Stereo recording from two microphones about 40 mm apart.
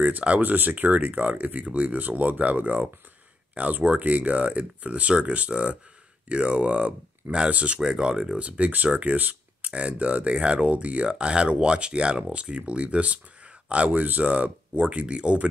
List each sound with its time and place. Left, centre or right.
0.4 s speech: right
9.7 s speech: right